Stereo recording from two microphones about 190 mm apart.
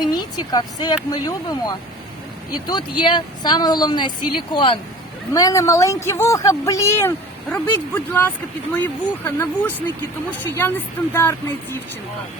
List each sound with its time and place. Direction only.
0.1 s a woman's voice: 20° left (ahead or behind)
3.0 s a woman's voice: 25° left (ahead or behind)